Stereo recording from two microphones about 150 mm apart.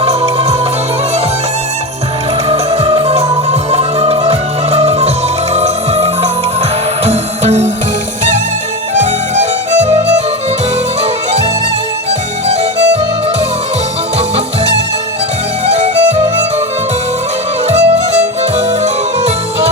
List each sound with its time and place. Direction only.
2.5 s music: 40° right (ahead or behind)
9.0 s music: 50° right (ahead or behind)
15.6 s music: 45° right (ahead or behind)
17.7 s music: 45° right (ahead or behind)